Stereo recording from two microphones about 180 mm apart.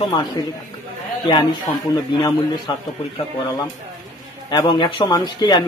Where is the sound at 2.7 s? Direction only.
25° left (ahead or behind).